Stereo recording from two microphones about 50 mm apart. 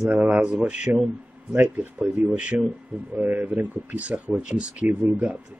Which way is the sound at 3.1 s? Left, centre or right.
Right.